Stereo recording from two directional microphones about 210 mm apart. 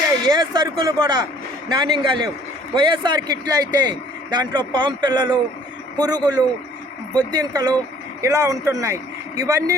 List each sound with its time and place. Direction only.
0.3 s speech: 20° right (ahead or behind)